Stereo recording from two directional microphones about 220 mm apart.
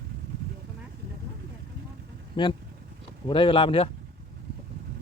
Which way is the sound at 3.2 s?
20° left (ahead or behind).